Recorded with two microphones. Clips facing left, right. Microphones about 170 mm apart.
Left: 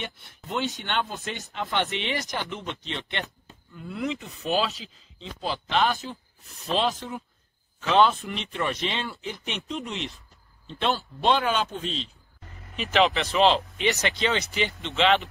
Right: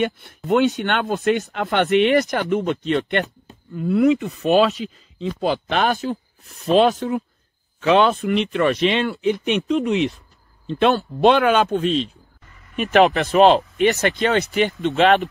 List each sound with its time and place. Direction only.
0.0 s speech: 60° right (ahead or behind)
13.6 s speech: 45° right (ahead or behind)